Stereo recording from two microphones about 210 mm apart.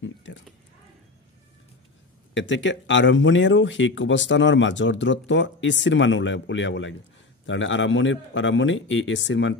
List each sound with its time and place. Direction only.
0.0 s speech: 60° left (ahead or behind)
2.3 s speech: 60° left (ahead or behind)